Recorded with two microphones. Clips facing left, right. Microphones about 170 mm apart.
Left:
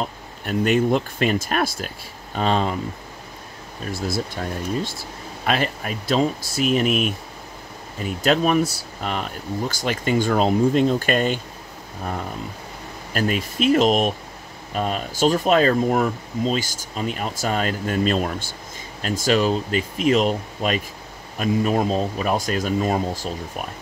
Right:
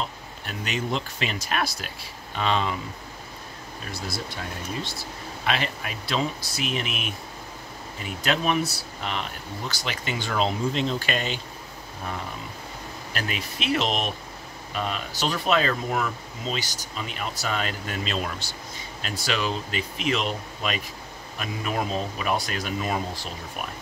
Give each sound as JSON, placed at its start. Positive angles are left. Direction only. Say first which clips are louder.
{"t": 0.0, "sound": "speech", "louder": "left 4 dB", "side_deg": 50}
{"t": 4.8, "sound": "speech", "louder": "left 3 dB", "side_deg": 45}
{"t": 13.1, "sound": "speech", "louder": "left 9 dB", "side_deg": 45}